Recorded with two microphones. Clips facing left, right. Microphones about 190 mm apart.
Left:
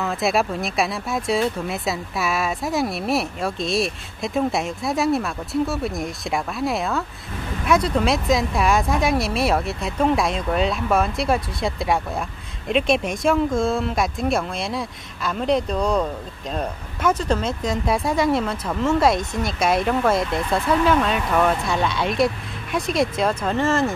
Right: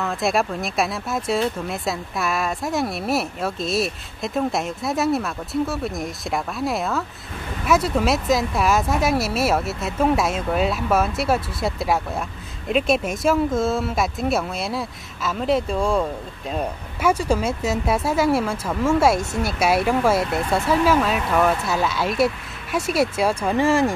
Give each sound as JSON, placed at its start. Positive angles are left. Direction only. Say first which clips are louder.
{"t": 0.0, "sound": "speech", "louder": "left 1 dB", "side_deg": 0}